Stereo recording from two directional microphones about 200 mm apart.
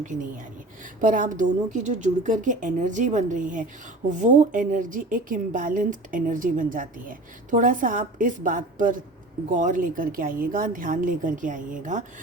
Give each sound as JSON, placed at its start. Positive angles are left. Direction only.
{"t": 0.0, "sound": "a woman's voice", "side_deg": -40}